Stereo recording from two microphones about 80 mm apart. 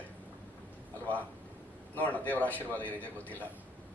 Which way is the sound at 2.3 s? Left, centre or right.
Left.